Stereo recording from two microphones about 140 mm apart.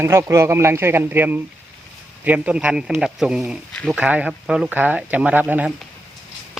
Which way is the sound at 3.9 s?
10° right (ahead or behind).